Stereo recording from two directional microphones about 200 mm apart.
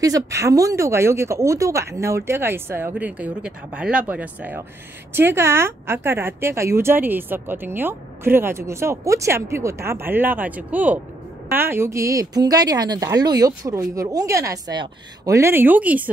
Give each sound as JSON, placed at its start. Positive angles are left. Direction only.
{"t": 0.0, "sound": "a woman's voice", "side_deg": -15}